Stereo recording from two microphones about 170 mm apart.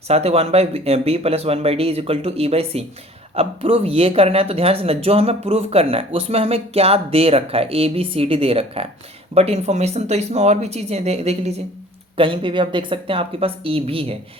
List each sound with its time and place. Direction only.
0.1 s speech: 35° right (ahead or behind)